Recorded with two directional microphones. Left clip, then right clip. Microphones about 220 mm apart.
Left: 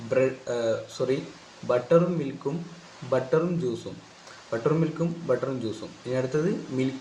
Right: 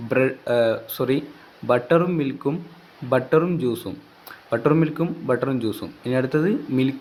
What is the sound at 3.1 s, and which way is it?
Speech, 55° right (ahead or behind).